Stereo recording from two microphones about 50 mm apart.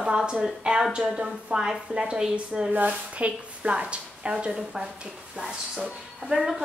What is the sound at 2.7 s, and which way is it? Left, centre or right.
A woman's voice, right.